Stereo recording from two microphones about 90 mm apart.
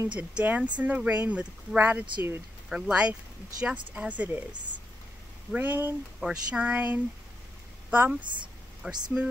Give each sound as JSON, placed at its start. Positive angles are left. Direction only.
{"t": 0.1, "sound": "speech", "side_deg": -15}
{"t": 2.7, "sound": "speech", "side_deg": -10}
{"t": 5.5, "sound": "a woman's voice", "side_deg": -20}
{"t": 8.2, "sound": "speech", "side_deg": -60}
{"t": 8.8, "sound": "speech", "side_deg": -15}